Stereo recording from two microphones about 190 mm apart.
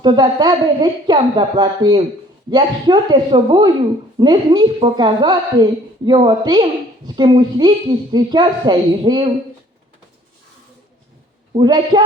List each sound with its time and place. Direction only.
0.0 s a woman's voice: 20° right (ahead or behind)
11.5 s a woman's voice: 25° right (ahead or behind)